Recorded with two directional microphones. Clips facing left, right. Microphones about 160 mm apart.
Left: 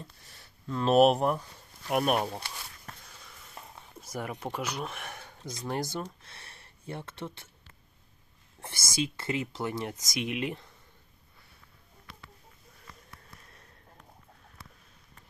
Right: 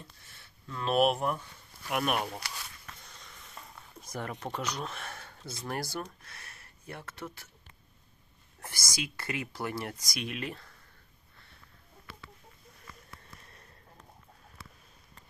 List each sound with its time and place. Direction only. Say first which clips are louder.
0.0 s speech: left 4 dB; 40° left (ahead or behind)
3.0 s a sound: even; 5° left (ahead or behind)
4.0 s speech: left 2 dB; 10° left (ahead or behind); by 7.4 s 25° left (ahead or behind)
8.6 s speech: left 6 dB; 25° left (ahead or behind)